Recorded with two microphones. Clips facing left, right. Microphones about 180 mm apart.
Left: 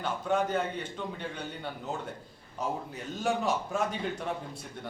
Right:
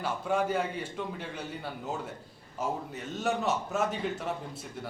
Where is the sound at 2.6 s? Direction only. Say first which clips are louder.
Right 1 dB; centre (ahead or behind).